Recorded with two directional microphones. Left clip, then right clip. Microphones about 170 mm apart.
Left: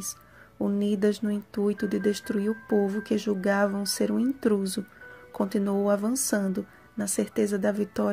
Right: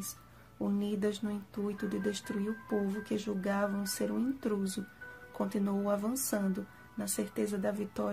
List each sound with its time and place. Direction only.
0.0 s speech: 30° left (ahead or behind)